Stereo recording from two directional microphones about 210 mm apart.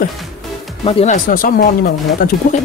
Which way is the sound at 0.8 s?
30° left (ahead or behind).